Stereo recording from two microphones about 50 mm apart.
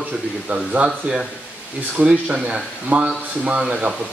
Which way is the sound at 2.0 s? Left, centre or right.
Right.